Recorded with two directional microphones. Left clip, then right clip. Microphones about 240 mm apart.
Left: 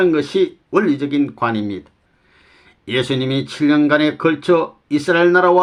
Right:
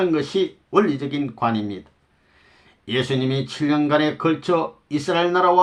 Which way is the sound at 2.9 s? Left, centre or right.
Left.